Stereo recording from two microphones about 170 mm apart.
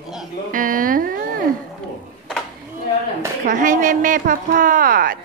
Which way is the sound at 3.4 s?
50° right (ahead or behind).